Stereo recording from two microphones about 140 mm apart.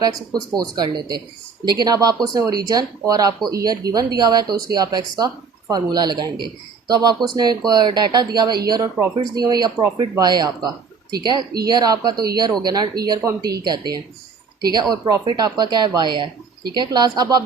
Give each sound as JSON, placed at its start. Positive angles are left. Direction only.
{"t": 0.0, "sound": "speech", "side_deg": -30}
{"t": 12.1, "sound": "speech", "side_deg": -90}
{"t": 12.6, "sound": "speech", "side_deg": -30}